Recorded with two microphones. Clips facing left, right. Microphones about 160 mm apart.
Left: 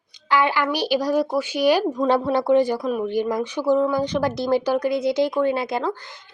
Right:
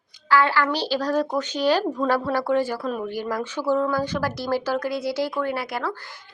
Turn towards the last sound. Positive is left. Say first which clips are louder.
# left 4 dB
turn(degrees=20)  # may be behind; listen again after turning